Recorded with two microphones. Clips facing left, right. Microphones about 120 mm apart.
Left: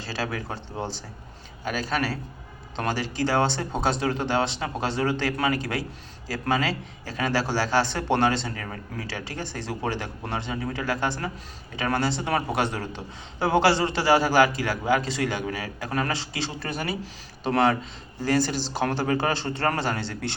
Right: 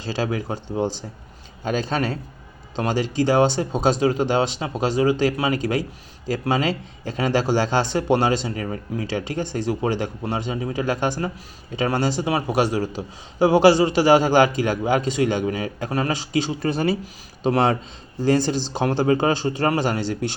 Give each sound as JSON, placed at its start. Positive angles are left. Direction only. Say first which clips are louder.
{"t": 0.0, "sound": "a man's voice", "louder": "right 6 dB", "side_deg": -20}
{"t": 16.6, "sound": "a man's voice", "louder": "right 8 dB", "side_deg": -30}